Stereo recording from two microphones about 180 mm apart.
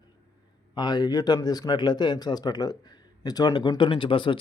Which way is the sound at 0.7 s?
25° left (ahead or behind).